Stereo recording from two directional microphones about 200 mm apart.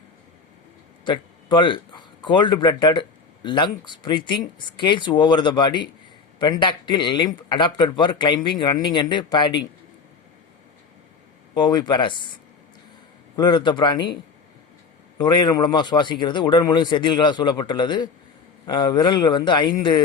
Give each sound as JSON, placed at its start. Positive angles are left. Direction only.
{"t": 1.0, "sound": "a man's voice", "side_deg": 25}
{"t": 11.5, "sound": "speech", "side_deg": 20}
{"t": 15.2, "sound": "speech", "side_deg": 20}